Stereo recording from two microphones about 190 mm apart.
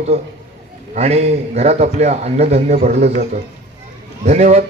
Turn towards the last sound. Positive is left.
turn(degrees=-35)  # may be behind; listen again after turning